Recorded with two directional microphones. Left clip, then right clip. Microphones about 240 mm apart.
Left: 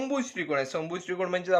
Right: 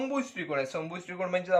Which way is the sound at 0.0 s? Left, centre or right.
Left.